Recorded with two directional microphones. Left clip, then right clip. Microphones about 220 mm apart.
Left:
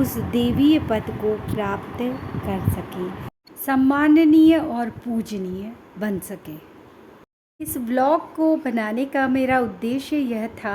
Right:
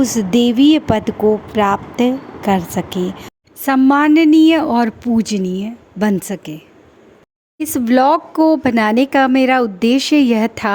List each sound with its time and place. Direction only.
0.0 s a woman's voice: 40° right (ahead or behind)
7.6 s a woman's voice: 40° right (ahead or behind)